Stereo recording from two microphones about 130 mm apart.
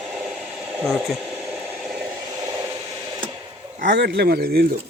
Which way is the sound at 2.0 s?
25° right (ahead or behind).